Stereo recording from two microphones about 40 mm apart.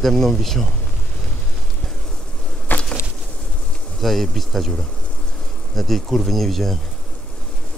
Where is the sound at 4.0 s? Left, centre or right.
Centre.